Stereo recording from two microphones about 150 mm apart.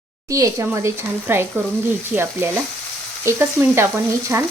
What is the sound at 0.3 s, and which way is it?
Speech, 20° right (ahead or behind).